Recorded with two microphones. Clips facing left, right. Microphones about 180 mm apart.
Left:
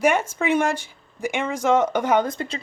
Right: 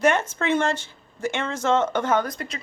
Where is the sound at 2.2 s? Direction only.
25° left (ahead or behind).